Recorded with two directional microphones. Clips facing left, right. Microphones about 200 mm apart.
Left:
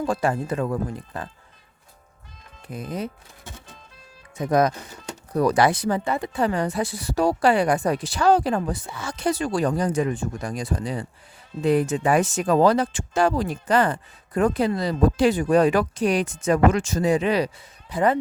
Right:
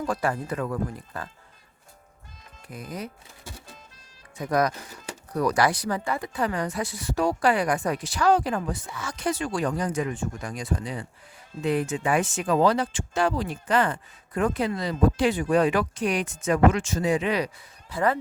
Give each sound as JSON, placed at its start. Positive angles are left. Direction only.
{"t": 0.0, "sound": "speech", "side_deg": 25}
{"t": 2.6, "sound": "speech", "side_deg": 25}
{"t": 4.4, "sound": "speech", "side_deg": 25}
{"t": 17.8, "sound": "speech", "side_deg": 20}